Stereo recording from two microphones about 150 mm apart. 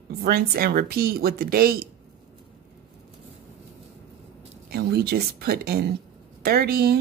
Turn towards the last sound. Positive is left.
turn(degrees=-90)